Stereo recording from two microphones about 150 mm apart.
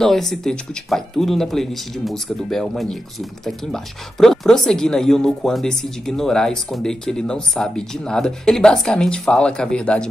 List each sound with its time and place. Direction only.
0.0 s speech: centre (ahead or behind)